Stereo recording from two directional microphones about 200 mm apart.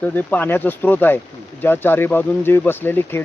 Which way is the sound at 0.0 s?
10° left (ahead or behind).